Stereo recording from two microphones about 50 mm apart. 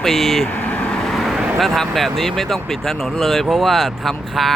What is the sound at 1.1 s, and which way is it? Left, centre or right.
Vehicle, centre.